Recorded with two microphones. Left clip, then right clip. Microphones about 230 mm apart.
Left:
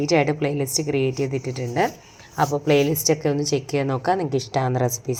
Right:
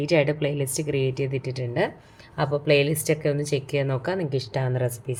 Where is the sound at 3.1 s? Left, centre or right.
Centre.